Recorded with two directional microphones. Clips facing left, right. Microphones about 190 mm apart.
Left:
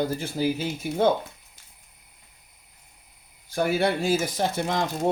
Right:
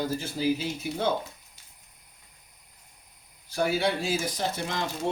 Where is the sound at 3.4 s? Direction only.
50° left (ahead or behind).